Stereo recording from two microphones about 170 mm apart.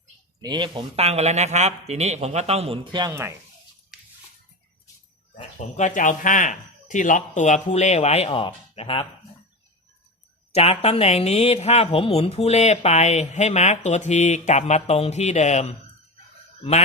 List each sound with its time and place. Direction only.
0.4 s speech: 25° right (ahead or behind)
5.5 s speech: 45° left (ahead or behind)
10.5 s speech: 35° left (ahead or behind)